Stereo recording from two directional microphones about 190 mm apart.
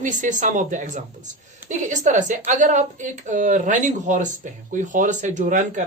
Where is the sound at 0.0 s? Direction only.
40° right (ahead or behind).